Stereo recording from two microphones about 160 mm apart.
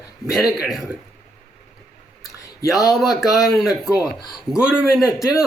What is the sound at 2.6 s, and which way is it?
A man's voice, centre (ahead or behind).